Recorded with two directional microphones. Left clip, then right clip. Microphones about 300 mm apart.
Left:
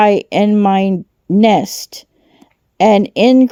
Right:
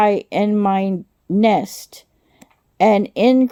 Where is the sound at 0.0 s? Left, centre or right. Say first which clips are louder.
Left 5 dB; left.